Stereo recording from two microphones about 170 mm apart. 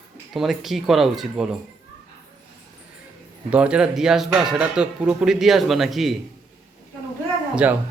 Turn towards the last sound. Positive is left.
turn(degrees=-10)  # may be behind; listen again after turning